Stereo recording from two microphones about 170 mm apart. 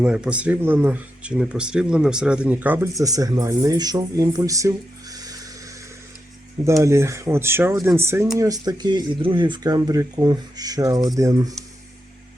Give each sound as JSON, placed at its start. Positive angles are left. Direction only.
{"t": 0.0, "sound": "speech", "side_deg": -5}
{"t": 6.7, "sound": "speech", "side_deg": -15}